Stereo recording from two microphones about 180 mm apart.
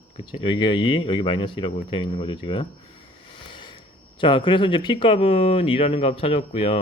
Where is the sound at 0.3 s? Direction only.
30° left (ahead or behind).